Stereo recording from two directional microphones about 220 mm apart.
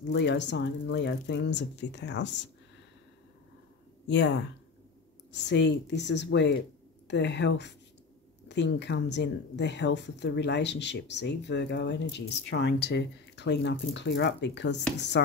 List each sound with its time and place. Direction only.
0.1 s speech: 55° left (ahead or behind)
4.1 s speech: 55° left (ahead or behind)